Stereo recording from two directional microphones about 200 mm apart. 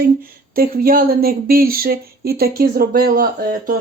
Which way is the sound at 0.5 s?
45° right (ahead or behind).